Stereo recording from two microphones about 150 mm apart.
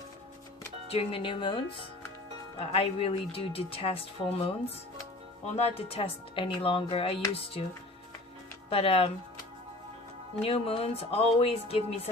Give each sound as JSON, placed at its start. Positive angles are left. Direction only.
{"t": 0.9, "sound": "speech", "side_deg": 40}
{"t": 5.5, "sound": "speech", "side_deg": 40}
{"t": 8.7, "sound": "speech", "side_deg": 40}
{"t": 10.4, "sound": "speech", "side_deg": 40}